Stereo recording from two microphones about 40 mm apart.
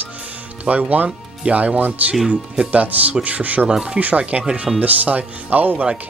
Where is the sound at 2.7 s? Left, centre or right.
Right.